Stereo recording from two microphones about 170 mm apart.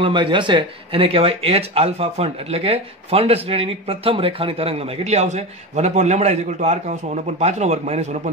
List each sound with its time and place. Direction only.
0.0 s speech: 30° right (ahead or behind)